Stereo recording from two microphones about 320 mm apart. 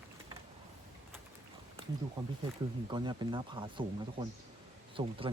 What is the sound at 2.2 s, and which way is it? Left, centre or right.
Speech, centre.